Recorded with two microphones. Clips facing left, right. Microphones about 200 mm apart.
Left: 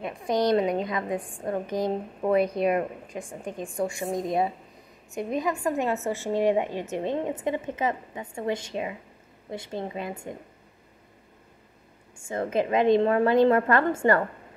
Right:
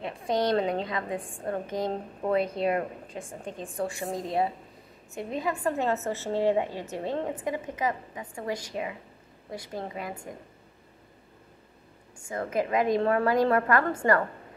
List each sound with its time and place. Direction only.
0.0 s a woman's voice: 25° right (ahead or behind)
0.5 s a woman's voice: 15° left (ahead or behind)
12.2 s a woman's voice: 25° left (ahead or behind)